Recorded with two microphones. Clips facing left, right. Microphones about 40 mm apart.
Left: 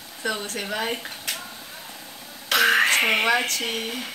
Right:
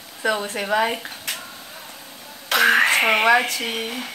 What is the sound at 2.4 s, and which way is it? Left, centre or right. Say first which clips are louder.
Speech: right 2 dB; centre.